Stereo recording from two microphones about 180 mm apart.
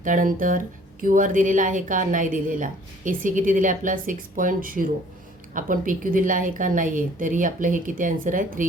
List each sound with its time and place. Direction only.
0.0 s speech: 45° right (ahead or behind)